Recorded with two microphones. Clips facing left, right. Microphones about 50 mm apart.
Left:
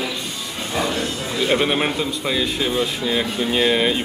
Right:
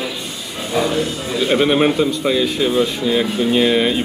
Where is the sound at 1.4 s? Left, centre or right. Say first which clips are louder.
Right 5 dB; centre.